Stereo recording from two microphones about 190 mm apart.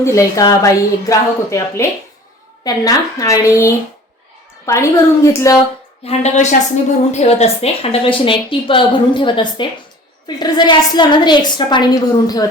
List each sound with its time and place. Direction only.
0.0 s a woman's voice: 15° left (ahead or behind)
6.1 s a woman's voice: 35° left (ahead or behind); by 12.5 s 20° left (ahead or behind)